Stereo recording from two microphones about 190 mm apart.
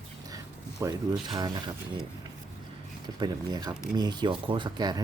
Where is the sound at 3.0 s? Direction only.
20° right (ahead or behind).